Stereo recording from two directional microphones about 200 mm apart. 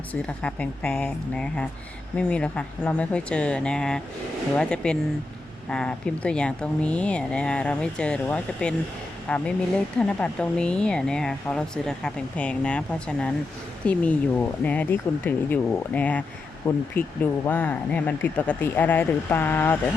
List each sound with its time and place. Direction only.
0.1 s speech: 5° left (ahead or behind)